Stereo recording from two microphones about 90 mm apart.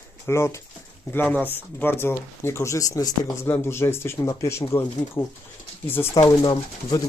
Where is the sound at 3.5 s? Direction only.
25° left (ahead or behind).